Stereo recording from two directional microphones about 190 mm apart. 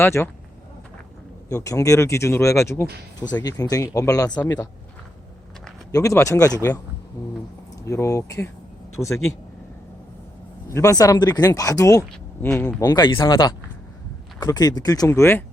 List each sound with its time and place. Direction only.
0.0 s speech: 15° left (ahead or behind)
1.5 s speech: 15° left (ahead or behind)
5.9 s speech: 15° left (ahead or behind)
7.9 s speech: 15° left (ahead or behind)
10.7 s speech: 15° left (ahead or behind)
12.5 s speech: 5° left (ahead or behind)
12.8 s speech: 25° left (ahead or behind)